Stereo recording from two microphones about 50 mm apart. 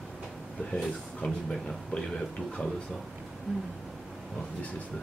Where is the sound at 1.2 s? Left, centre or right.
Centre.